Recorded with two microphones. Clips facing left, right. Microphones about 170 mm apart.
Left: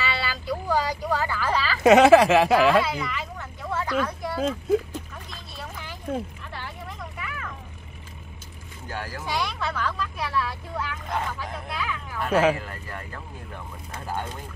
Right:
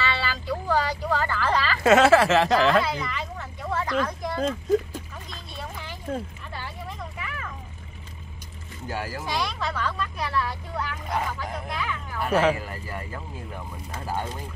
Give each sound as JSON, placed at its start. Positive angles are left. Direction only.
{"t": 0.0, "sound": "vehicle", "side_deg": 10}
{"t": 1.8, "sound": "speech", "side_deg": 15}
{"t": 5.3, "sound": "a sound", "side_deg": 0}
{"t": 8.8, "sound": "speech", "side_deg": -10}
{"t": 11.1, "sound": "speech", "side_deg": -10}
{"t": 11.3, "sound": "a sound", "side_deg": 0}
{"t": 12.5, "sound": "speech", "side_deg": -5}